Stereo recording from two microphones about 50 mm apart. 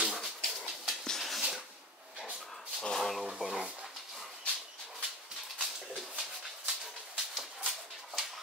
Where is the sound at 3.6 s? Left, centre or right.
Right.